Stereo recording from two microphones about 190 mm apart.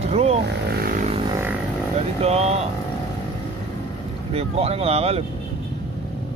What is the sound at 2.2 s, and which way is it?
Speech, 35° right (ahead or behind).